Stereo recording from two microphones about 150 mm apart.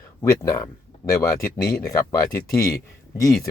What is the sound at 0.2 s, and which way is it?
Speech, 25° left (ahead or behind).